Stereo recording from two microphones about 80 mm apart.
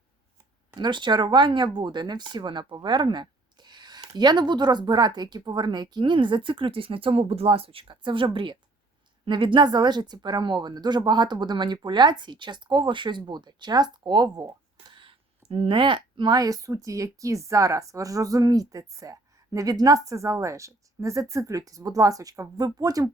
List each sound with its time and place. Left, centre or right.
0.8 s a woman's voice: right
15.7 s a woman's voice: right
16.4 s speech: right